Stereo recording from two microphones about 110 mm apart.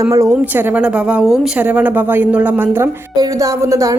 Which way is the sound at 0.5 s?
15° right (ahead or behind).